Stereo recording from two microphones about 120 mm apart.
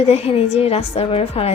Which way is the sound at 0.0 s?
55° left (ahead or behind).